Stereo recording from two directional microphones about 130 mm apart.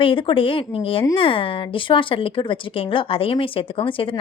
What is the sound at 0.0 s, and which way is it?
A woman's voice, 40° left (ahead or behind).